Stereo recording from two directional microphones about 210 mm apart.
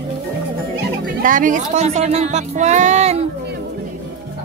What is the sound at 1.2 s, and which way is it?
Speech, 40° right (ahead or behind).